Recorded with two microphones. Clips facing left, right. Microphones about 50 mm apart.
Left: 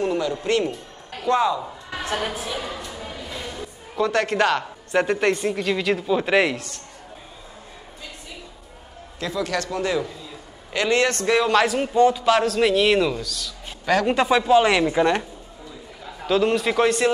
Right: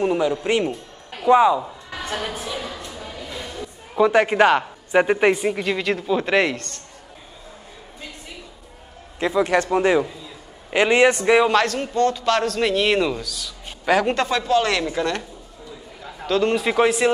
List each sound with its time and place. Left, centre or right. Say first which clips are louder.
0.0 s a man's voice: right 3 dB; centre
2.0 s speech: left 1 dB; centre
2.7 s a sound: left 1 dB; left
3.9 s a woman's voice: right 5 dB; centre
9.2 s a man's voice: right 6 dB; right
11.6 s a man's voice: left 3 dB; centre
14.0 s speech: left 3 dB; centre
16.0 s a man's voice: even; centre